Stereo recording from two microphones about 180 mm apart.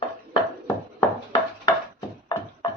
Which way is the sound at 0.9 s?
20° left (ahead or behind).